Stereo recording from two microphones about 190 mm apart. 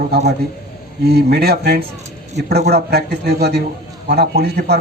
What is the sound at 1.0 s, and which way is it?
A man's voice, 55° right (ahead or behind).